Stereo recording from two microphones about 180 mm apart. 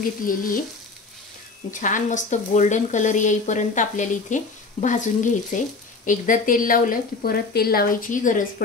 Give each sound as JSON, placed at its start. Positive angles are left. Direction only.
{"t": 0.2, "sound": "speech", "side_deg": 50}
{"t": 1.7, "sound": "speech", "side_deg": 45}